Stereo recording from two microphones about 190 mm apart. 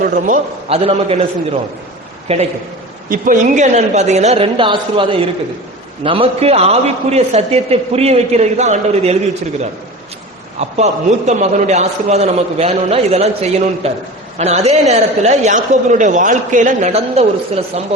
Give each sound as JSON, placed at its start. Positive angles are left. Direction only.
{"t": 0.0, "sound": "a man's voice", "side_deg": -45}
{"t": 0.9, "sound": "a man's voice", "side_deg": -30}
{"t": 2.2, "sound": "a man's voice", "side_deg": -35}
{"t": 3.1, "sound": "a man's voice", "side_deg": -45}
{"t": 10.6, "sound": "a man's voice", "side_deg": -35}